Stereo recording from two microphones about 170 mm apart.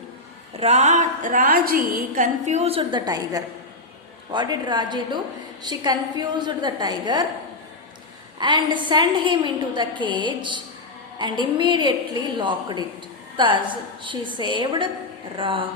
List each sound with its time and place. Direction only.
0.6 s a woman's voice: 40° right (ahead or behind)
3.1 s a woman's voice: 20° right (ahead or behind)
8.4 s a woman's voice: 25° right (ahead or behind)
15.4 s a sound: 30° right (ahead or behind)